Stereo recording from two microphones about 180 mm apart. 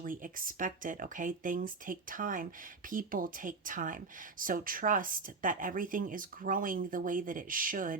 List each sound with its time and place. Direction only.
0.0 s speech: 50° right (ahead or behind)